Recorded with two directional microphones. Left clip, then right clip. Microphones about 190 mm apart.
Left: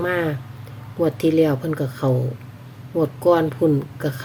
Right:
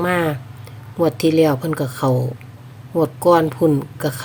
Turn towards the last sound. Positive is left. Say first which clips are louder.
# right 2 dB
turn(degrees=-30)  # may be behind; listen again after turning